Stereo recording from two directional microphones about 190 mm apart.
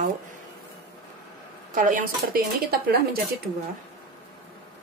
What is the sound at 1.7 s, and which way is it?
Speech, 45° right (ahead or behind).